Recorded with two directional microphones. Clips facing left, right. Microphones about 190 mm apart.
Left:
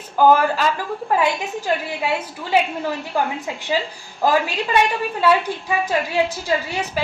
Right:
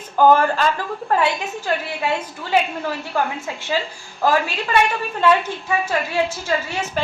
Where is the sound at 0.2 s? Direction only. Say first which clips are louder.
Even; 10° left (ahead or behind).